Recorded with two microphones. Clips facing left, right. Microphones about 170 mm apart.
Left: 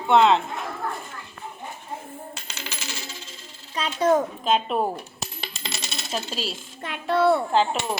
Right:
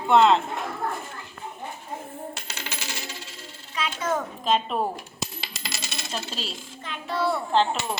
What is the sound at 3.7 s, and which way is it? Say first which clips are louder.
Speech: left 7 dB; 35° left (ahead or behind).